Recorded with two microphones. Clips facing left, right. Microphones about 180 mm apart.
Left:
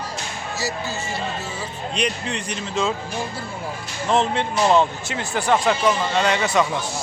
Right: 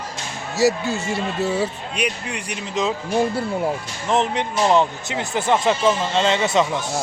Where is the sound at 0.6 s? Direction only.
65° right (ahead or behind).